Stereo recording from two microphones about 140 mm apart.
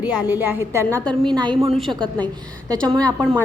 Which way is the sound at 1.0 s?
30° right (ahead or behind).